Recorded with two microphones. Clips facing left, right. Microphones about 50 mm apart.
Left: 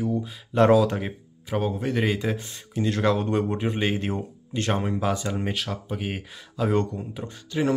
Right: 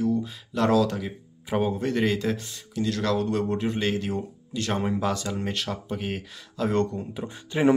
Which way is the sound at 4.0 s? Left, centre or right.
Left.